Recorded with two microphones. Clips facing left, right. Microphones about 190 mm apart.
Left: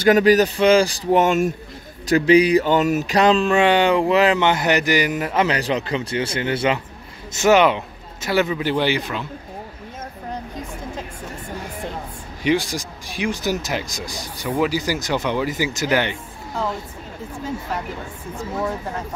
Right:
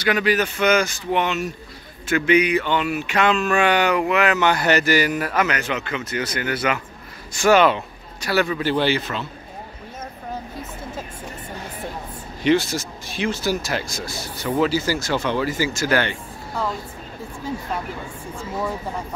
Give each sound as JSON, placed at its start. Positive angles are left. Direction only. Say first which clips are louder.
{"t": 0.0, "sound": "speech", "louder": "left 6 dB", "side_deg": 40}
{"t": 2.0, "sound": "speech", "louder": "left 4 dB", "side_deg": 35}
{"t": 12.4, "sound": "speech", "louder": "right 2 dB", "side_deg": 15}